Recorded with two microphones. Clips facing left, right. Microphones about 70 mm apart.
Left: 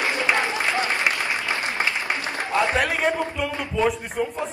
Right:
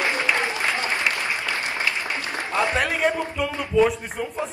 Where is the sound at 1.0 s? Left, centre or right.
Left.